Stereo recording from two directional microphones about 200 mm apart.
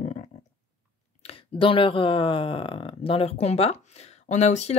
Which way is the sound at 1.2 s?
25° left (ahead or behind).